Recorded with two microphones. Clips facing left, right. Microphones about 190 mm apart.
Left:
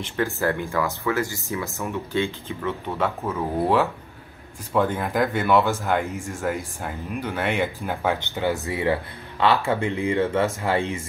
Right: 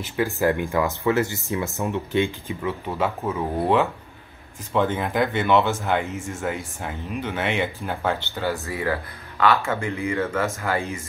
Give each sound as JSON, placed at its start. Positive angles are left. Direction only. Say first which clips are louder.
{"t": 0.0, "sound": "speech", "louder": "right 2 dB", "side_deg": -10}
{"t": 2.9, "sound": "speech", "louder": "right 1 dB", "side_deg": -5}
{"t": 7.9, "sound": "speech", "louder": "left 1 dB", "side_deg": 15}
{"t": 9.4, "sound": "speech", "louder": "left 1 dB", "side_deg": 30}